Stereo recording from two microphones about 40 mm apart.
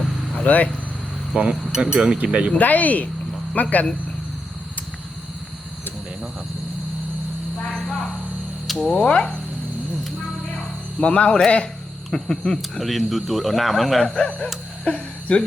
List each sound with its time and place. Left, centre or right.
0.4 s speech: left
1.3 s speech: right
1.7 s speech: centre
2.6 s speech: left
8.8 s speech: centre
11.0 s speech: left
12.8 s speech: centre
14.0 s speech: left